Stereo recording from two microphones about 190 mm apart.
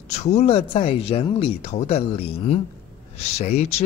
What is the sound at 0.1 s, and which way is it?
A man's voice, 35° left (ahead or behind).